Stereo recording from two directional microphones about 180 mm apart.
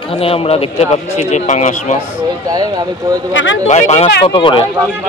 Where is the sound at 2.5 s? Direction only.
20° right (ahead or behind).